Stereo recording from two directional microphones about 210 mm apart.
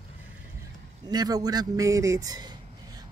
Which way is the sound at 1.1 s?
20° right (ahead or behind).